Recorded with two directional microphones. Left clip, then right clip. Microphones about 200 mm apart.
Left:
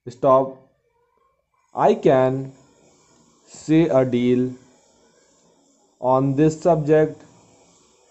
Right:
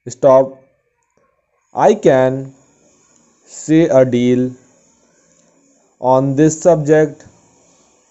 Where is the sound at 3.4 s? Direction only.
10° right (ahead or behind).